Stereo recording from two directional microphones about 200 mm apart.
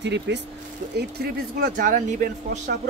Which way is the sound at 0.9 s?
50° right (ahead or behind).